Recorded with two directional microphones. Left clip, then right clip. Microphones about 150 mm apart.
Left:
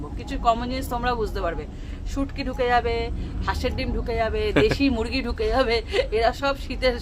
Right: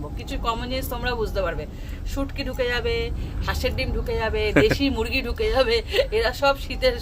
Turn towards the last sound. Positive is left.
turn(degrees=20)  # may be behind; listen again after turning